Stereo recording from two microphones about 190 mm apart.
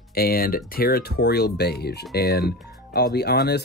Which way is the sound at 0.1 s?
50° left (ahead or behind).